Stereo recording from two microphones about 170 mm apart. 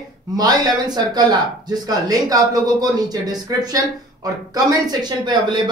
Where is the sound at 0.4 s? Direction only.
25° right (ahead or behind).